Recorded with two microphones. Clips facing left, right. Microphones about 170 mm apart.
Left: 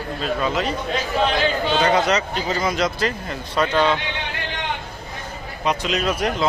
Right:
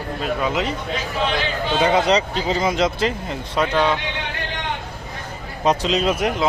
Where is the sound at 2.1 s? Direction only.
25° right (ahead or behind).